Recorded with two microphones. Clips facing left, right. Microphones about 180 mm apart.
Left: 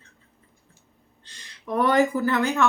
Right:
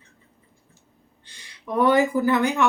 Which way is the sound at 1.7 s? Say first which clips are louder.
Right 2 dB; 15° right (ahead or behind).